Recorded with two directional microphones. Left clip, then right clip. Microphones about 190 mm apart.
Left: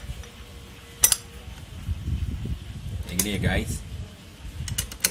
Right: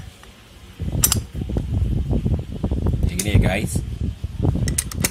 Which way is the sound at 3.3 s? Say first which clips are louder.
Right 6 dB; 30° right (ahead or behind).